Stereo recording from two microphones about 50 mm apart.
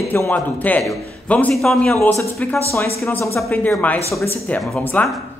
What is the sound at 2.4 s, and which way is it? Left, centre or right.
Speech, left.